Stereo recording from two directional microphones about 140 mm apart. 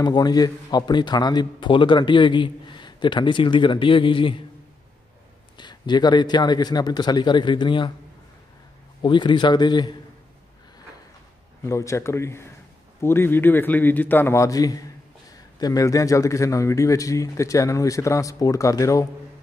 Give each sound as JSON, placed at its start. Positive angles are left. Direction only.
{"t": 0.0, "sound": "a man's voice", "side_deg": 30}
{"t": 5.6, "sound": "a man's voice", "side_deg": 30}
{"t": 9.0, "sound": "a man's voice", "side_deg": 35}
{"t": 11.6, "sound": "a man's voice", "side_deg": 20}